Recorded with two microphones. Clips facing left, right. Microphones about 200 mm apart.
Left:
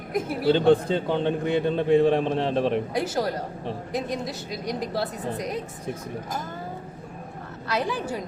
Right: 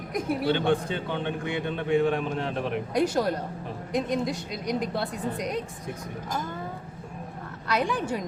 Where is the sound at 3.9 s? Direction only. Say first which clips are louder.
Right 4 dB; 5° left (ahead or behind).